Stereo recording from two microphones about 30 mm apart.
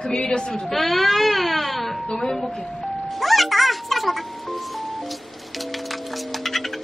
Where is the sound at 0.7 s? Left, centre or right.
Centre.